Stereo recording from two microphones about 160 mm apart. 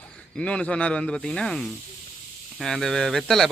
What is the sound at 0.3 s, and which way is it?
A man's voice, 5° left (ahead or behind).